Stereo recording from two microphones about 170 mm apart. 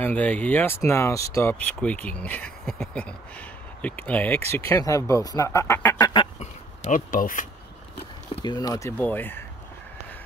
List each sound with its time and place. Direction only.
0.0 s speech: 10° left (ahead or behind)
6.4 s a sound: 45° left (ahead or behind)
8.4 s speech: 25° left (ahead or behind)